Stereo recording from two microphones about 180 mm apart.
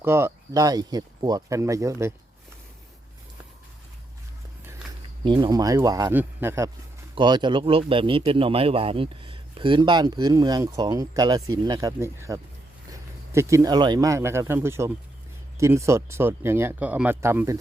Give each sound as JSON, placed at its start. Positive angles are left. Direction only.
{"t": 0.0, "sound": "speech", "side_deg": -15}
{"t": 5.2, "sound": "a man's voice", "side_deg": -25}
{"t": 7.2, "sound": "a man's voice", "side_deg": -25}